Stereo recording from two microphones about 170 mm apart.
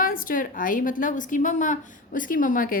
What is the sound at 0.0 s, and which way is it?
A woman's voice, 55° left (ahead or behind).